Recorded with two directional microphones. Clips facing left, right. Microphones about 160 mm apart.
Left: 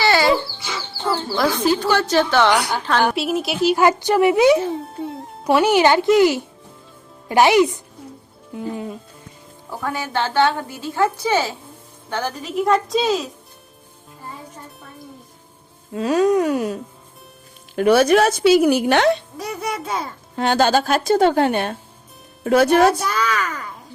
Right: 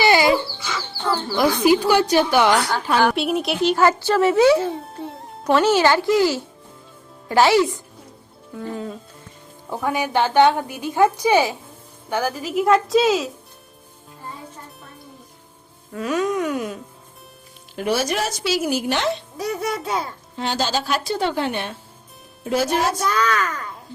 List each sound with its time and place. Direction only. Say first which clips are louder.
0.0 s chicken: right 1 dB; 15° right (ahead or behind)
1.4 s a woman's voice: right 3 dB; 10° right (ahead or behind)
2.5 s speech: even; 15° left (ahead or behind)
3.0 s speech: even; 5° left (ahead or behind); by 7.8 s 20° left (ahead or behind)
8.5 s music: left 2 dB; 15° left (ahead or behind)
9.6 s a woman's voice: right 3 dB; 15° right (ahead or behind); by 13.3 s centre (ahead or behind)
15.9 s speech: left 6 dB; 30° left (ahead or behind)
17.7 s a woman's voice: left 8 dB; 55° left (ahead or behind)
19.4 s speech: right 2 dB; centre (ahead or behind)
20.3 s a woman's voice: left 7 dB; 55° left (ahead or behind)
22.4 s a woman's voice: left 7 dB; 60° left (ahead or behind)
23.0 s speech: right 1 dB; 10° left (ahead or behind)